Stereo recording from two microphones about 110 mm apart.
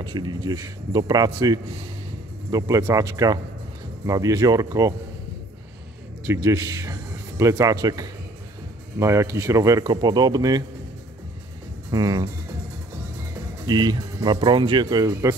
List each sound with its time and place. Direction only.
0.0 s speech: 40° right (ahead or behind)
6.2 s a man's voice: 25° right (ahead or behind)
11.9 s speech: 35° right (ahead or behind)
13.7 s speech: 40° right (ahead or behind)